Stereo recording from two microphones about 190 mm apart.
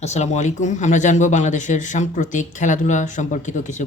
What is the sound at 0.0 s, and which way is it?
A man's voice, 35° left (ahead or behind).